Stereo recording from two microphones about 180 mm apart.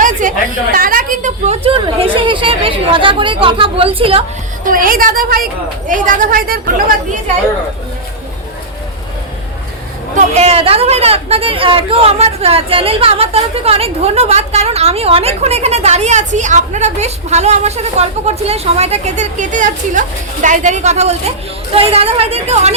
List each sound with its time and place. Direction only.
0.0 s a sound: 45° right (ahead or behind); by 4.2 s 30° right (ahead or behind)
4.6 s a woman's voice: 50° right (ahead or behind)
10.2 s speech: 35° right (ahead or behind)